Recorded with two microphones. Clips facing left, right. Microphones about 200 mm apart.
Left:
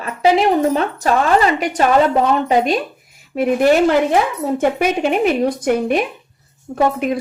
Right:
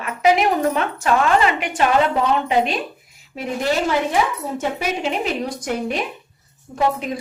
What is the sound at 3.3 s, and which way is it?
A woman's voice, 55° left (ahead or behind).